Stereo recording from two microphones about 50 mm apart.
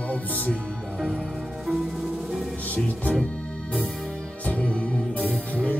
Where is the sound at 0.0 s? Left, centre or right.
Left.